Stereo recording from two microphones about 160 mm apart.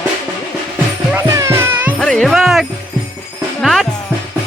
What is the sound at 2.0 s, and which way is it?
Speech, 5° left (ahead or behind).